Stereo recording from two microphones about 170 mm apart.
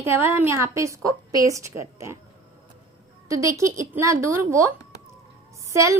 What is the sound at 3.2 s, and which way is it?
A woman's voice, 20° right (ahead or behind).